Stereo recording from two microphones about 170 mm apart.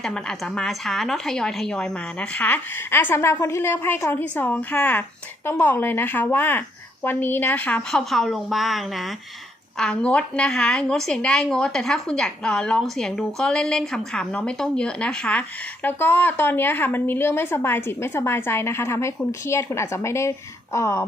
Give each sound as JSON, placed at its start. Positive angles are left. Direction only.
{"t": 0.0, "sound": "a woman's voice", "side_deg": 5}